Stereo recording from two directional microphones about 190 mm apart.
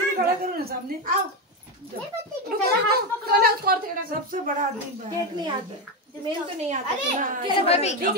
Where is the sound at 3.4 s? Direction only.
50° right (ahead or behind).